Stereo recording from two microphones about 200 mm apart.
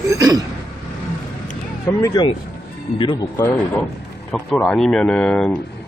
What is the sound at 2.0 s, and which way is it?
Speech, 15° left (ahead or behind).